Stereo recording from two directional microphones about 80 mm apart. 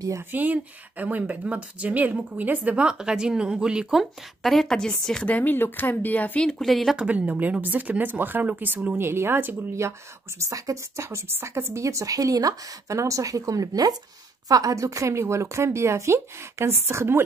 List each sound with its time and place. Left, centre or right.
0.3 s speech: right; by 5.3 s centre
5.3 s speech: left
6.6 s speech: centre
7.0 s speech: centre
9.8 s speech: right